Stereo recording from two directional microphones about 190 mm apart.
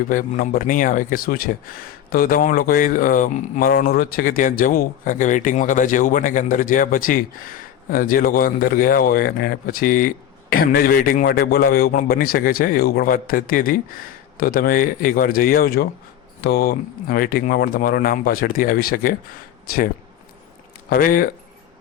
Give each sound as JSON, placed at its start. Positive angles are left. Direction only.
{"t": 0.1, "sound": "speech", "side_deg": 45}
{"t": 20.9, "sound": "speech", "side_deg": 45}